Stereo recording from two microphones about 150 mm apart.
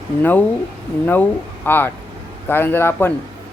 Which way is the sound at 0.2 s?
10° left (ahead or behind).